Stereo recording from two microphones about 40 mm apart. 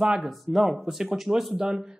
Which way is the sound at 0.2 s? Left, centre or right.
Centre.